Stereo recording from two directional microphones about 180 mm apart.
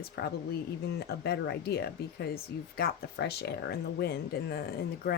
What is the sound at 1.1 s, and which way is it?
Speech, 65° left (ahead or behind).